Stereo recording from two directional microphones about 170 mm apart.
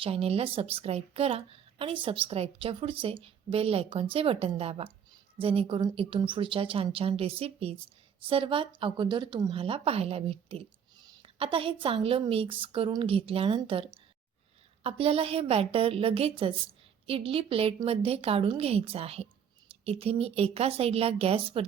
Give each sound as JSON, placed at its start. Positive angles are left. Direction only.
{"t": 0.0, "sound": "a woman's voice", "side_deg": -35}